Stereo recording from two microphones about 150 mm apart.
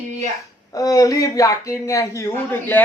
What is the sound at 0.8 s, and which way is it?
Speech, 25° left (ahead or behind).